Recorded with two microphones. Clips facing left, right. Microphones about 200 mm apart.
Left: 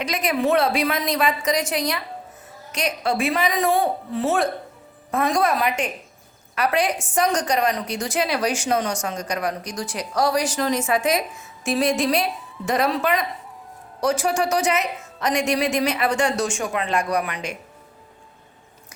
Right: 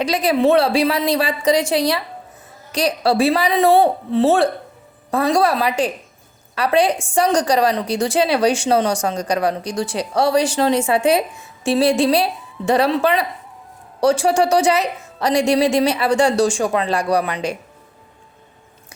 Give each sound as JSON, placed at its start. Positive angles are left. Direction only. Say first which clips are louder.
{"t": 0.0, "sound": "a woman's voice", "louder": "right 6 dB", "side_deg": -30}